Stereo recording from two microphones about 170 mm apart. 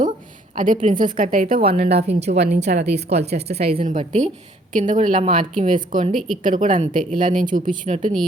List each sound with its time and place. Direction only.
0.5 s speech: 50° right (ahead or behind)
1.8 s a woman's voice: 75° right (ahead or behind)
2.0 s a woman's voice: 40° right (ahead or behind)
3.8 s speech: 45° right (ahead or behind)